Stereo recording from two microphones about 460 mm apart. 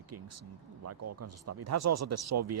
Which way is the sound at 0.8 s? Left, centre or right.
Right.